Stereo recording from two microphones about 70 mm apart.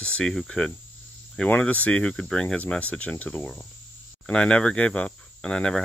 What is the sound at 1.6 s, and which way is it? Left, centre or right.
Cricket, left.